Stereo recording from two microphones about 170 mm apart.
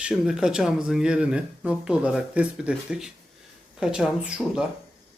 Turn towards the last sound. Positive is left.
turn(degrees=-5)  # may be behind; listen again after turning